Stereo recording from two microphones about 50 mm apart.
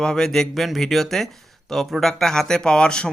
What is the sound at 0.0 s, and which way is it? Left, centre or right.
Speech, centre.